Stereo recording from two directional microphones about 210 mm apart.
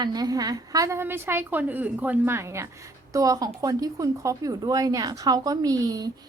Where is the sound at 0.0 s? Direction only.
20° right (ahead or behind).